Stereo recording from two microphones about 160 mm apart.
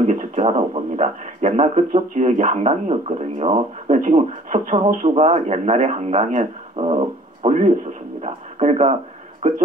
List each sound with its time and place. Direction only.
0.0 s a man's voice: 50° right (ahead or behind)
8.2 s a sound: 40° right (ahead or behind)
9.4 s a man's voice: 50° right (ahead or behind)